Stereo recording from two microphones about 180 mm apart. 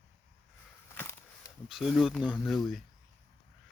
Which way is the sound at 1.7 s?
Centre (ahead or behind).